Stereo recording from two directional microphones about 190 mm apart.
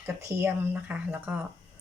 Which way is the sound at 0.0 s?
15° right (ahead or behind).